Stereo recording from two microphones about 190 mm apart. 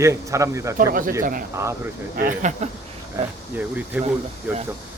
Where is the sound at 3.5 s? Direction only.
10° right (ahead or behind).